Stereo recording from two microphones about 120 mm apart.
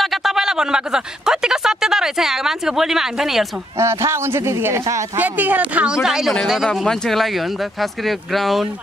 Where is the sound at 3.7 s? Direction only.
25° right (ahead or behind).